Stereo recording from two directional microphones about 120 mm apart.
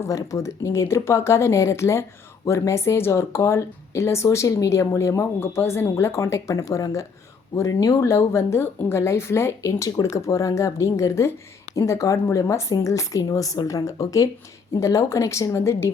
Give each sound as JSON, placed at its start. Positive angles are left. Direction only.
{"t": 0.0, "sound": "speech", "side_deg": 25}